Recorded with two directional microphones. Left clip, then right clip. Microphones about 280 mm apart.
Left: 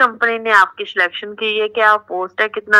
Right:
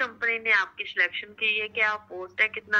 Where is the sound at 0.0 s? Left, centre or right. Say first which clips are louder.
Left 12 dB; left.